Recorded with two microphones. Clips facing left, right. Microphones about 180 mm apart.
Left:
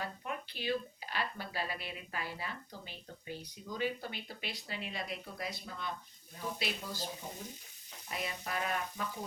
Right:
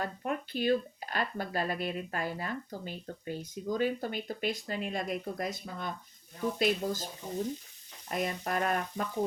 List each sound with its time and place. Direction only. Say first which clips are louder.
0.0 s speech: right 7 dB; 50° right (ahead or behind)
8.1 s speech: right 7 dB; 50° right (ahead or behind)